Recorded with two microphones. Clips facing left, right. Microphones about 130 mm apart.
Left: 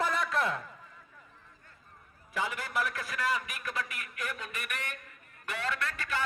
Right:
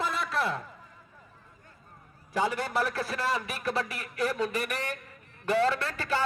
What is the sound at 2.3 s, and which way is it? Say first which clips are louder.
A man's voice: right 5 dB; 35° right (ahead or behind).